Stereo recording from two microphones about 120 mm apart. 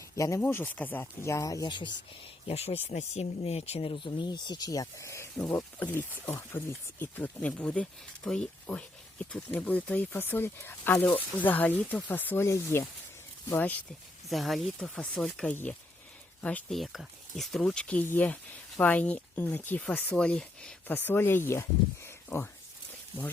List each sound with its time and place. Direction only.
0.2 s speech: 25° left (ahead or behind)
0.4 s speech: 15° left (ahead or behind)
1.6 s speech: 40° left (ahead or behind)
2.5 s speech: 60° left (ahead or behind); by 5.5 s 20° left (ahead or behind)
6.5 s speech: 20° left (ahead or behind)
14.3 s speech: centre (ahead or behind)
16.7 s speech: centre (ahead or behind); by 22.4 s 20° left (ahead or behind)